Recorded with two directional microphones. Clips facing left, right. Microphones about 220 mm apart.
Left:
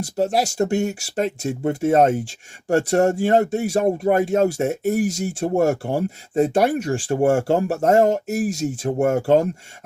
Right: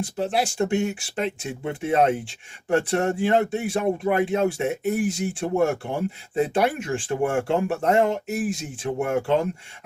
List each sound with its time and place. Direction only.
0.0 s speech: 40° left (ahead or behind)